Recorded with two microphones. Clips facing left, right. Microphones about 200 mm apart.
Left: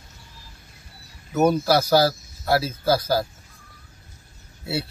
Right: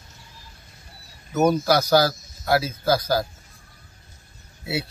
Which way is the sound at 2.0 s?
30° left (ahead or behind).